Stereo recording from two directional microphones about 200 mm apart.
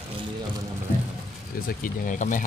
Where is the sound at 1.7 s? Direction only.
40° left (ahead or behind).